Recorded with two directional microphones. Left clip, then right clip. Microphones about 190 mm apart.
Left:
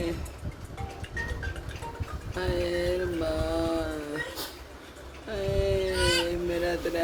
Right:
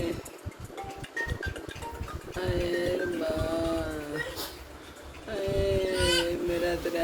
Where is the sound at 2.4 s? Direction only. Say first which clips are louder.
Left 1 dB; 15° left (ahead or behind).